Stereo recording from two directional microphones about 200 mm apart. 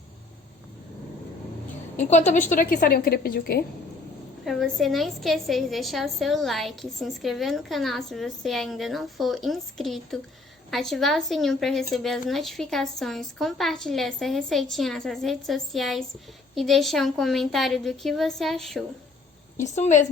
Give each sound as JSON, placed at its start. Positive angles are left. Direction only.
{"t": 2.0, "sound": "a woman's voice", "side_deg": 35}
{"t": 4.4, "sound": "a woman's voice", "side_deg": 0}
{"t": 19.5, "sound": "a woman's voice", "side_deg": 35}